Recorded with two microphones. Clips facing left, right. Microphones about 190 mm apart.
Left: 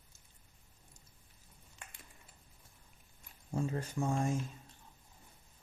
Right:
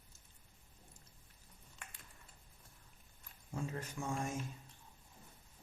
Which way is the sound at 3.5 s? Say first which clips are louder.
Left 6 dB; 30° left (ahead or behind).